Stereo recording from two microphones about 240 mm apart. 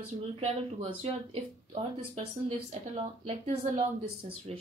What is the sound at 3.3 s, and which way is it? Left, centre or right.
Speech, right.